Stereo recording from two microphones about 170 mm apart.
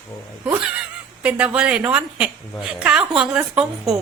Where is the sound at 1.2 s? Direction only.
5° right (ahead or behind).